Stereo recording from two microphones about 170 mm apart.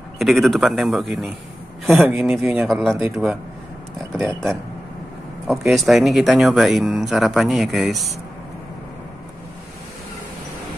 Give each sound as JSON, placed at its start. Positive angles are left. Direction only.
{"t": 0.2, "sound": "speech", "side_deg": 0}
{"t": 3.0, "sound": "a man's voice", "side_deg": -15}
{"t": 5.5, "sound": "speech", "side_deg": 0}